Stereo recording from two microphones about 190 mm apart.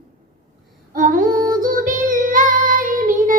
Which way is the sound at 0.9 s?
45° right (ahead or behind).